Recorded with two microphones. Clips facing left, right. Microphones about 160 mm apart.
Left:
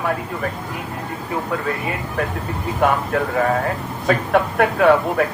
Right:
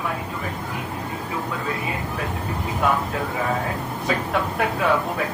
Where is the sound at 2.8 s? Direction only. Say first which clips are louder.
Left 5 dB; 60° left (ahead or behind).